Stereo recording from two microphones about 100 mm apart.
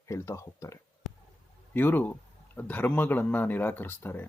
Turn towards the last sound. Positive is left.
turn(degrees=20)  # may be behind; listen again after turning